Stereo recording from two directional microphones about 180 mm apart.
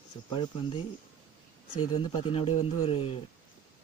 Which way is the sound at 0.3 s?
25° left (ahead or behind).